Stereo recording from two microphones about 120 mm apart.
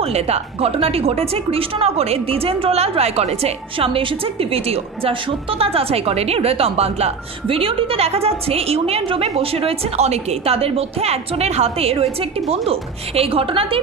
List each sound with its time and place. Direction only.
0.0 s speech: 60° right (ahead or behind)